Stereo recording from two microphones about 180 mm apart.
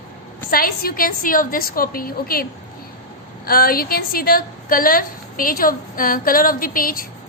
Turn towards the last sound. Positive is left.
turn(degrees=50)  # may be behind; listen again after turning